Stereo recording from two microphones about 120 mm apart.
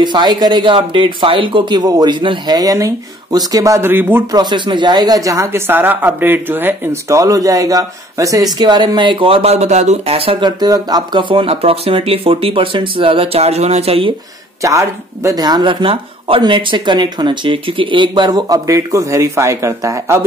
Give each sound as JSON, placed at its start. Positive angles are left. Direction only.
{"t": 0.0, "sound": "speech", "side_deg": -40}
{"t": 0.7, "sound": "speech", "side_deg": -50}
{"t": 4.3, "sound": "speech", "side_deg": -35}
{"t": 14.6, "sound": "speech", "side_deg": -25}